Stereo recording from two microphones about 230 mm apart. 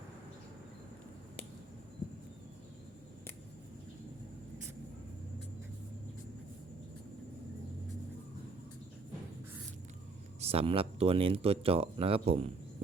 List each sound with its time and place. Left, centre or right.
10.4 s speech: right